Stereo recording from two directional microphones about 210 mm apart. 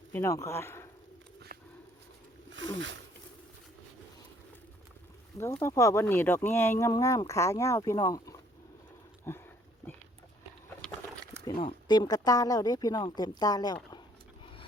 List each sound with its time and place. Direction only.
0.1 s speech: 15° left (ahead or behind)
2.5 s speech: 65° right (ahead or behind)
5.4 s speech: 15° left (ahead or behind)
11.4 s speech: 20° left (ahead or behind)